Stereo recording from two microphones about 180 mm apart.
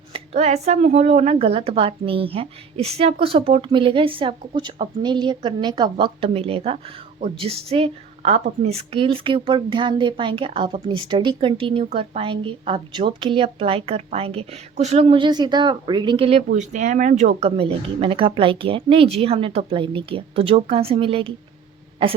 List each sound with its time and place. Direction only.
0.1 s a woman's voice: 40° right (ahead or behind)